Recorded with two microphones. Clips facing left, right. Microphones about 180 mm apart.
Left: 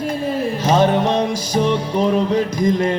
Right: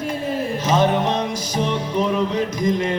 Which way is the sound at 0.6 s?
35° left (ahead or behind).